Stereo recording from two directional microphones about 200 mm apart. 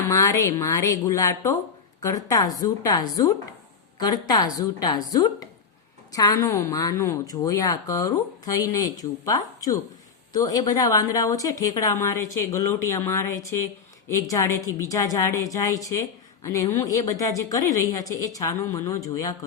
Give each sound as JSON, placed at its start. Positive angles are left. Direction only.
{"t": 0.1, "sound": "a woman's voice", "side_deg": 15}